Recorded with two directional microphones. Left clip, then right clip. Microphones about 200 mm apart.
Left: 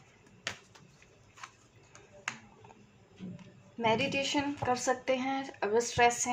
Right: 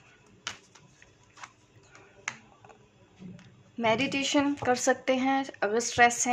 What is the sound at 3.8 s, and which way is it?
Speech, 40° right (ahead or behind).